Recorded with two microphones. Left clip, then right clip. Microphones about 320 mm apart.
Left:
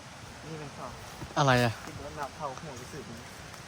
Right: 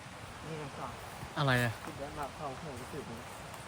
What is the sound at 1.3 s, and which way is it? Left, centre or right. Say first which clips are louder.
Speech: left 7 dB; centre.